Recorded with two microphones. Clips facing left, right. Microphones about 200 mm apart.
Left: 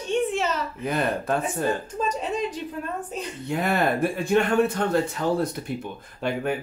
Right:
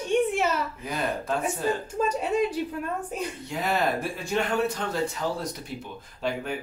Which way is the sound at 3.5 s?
55° left (ahead or behind).